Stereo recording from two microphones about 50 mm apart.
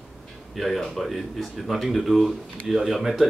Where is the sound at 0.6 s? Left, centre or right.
Centre.